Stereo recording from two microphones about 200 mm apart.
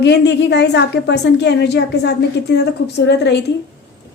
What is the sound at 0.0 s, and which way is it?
A woman's voice, 55° left (ahead or behind).